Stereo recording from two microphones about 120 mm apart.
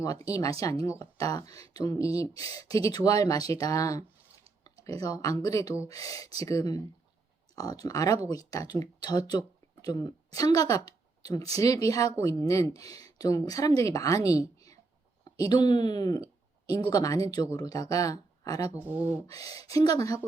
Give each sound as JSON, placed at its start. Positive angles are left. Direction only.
{"t": 0.9, "sound": "speech", "side_deg": 30}
{"t": 14.3, "sound": "a sound", "side_deg": 30}
{"t": 15.2, "sound": "speech", "side_deg": 35}
{"t": 18.8, "sound": "speech", "side_deg": -15}
{"t": 19.3, "sound": "speech", "side_deg": 30}